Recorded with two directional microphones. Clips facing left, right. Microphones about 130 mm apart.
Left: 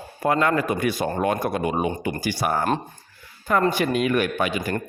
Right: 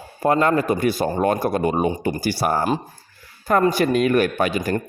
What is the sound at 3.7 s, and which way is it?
Speech, 40° right (ahead or behind).